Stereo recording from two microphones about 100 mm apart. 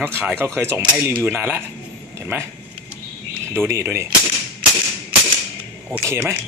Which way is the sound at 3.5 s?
25° right (ahead or behind).